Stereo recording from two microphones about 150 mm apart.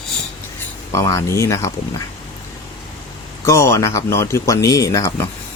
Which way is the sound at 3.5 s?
20° left (ahead or behind).